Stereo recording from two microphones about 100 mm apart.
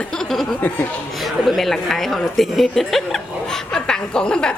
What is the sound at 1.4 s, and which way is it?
A woman's voice, centre (ahead or behind).